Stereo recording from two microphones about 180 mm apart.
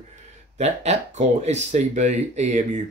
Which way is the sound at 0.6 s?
35° right (ahead or behind).